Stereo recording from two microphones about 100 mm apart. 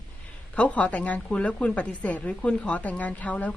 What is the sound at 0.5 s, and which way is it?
A woman's voice, 10° left (ahead or behind).